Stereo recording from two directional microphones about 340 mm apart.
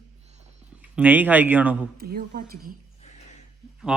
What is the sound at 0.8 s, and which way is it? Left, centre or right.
A man's voice, centre.